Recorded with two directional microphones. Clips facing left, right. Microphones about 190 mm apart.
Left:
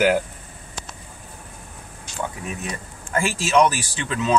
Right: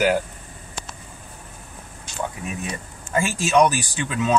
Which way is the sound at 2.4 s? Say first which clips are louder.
Even; 5° right (ahead or behind).